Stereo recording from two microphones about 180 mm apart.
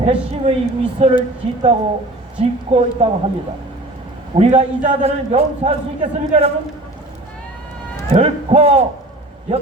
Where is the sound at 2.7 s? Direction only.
35° right (ahead or behind).